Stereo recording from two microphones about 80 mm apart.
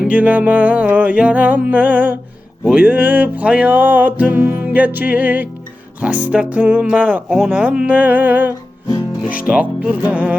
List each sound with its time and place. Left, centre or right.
0.1 s music: centre
6.0 s speech: centre
7.3 s music: centre; by 8.5 s right
9.5 s speech: centre